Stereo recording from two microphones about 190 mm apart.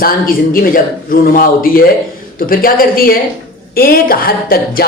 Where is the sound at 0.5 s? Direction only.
50° left (ahead or behind).